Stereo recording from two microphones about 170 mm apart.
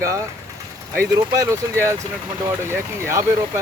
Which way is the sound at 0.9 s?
15° right (ahead or behind).